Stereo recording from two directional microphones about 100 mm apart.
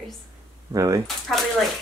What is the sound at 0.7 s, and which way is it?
Speech, 35° right (ahead or behind).